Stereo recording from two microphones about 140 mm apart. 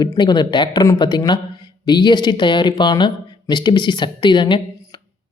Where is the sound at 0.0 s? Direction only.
30° left (ahead or behind).